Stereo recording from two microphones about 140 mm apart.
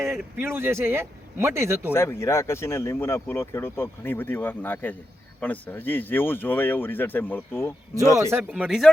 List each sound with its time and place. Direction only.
0.4 s speech: 15° right (ahead or behind)
1.9 s speech: 20° left (ahead or behind)
8.2 s speech: 15° right (ahead or behind)
8.6 s speech: 5° right (ahead or behind)